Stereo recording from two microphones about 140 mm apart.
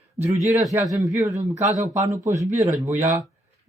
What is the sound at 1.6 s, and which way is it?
Speech, 60° right (ahead or behind).